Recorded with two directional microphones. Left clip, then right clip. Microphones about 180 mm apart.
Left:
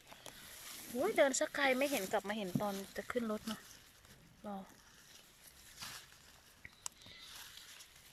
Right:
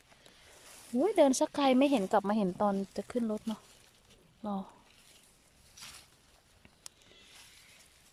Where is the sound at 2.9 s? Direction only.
10° right (ahead or behind).